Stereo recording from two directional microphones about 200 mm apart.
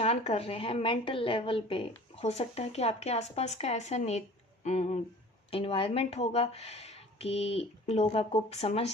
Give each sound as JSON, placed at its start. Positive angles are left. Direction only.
{"t": 0.0, "sound": "a woman's voice", "side_deg": 30}